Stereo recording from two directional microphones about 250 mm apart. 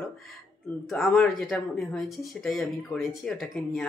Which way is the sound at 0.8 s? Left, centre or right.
Centre.